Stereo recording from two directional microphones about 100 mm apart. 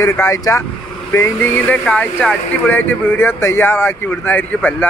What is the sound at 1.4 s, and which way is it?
Speech, 15° left (ahead or behind).